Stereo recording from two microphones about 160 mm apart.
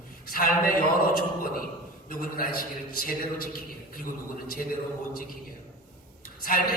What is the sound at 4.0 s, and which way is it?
Speech, 65° left (ahead or behind).